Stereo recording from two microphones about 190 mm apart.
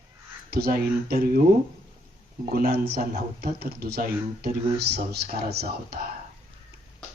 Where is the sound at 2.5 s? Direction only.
55° right (ahead or behind).